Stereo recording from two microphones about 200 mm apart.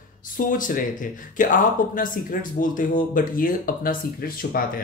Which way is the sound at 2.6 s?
40° left (ahead or behind).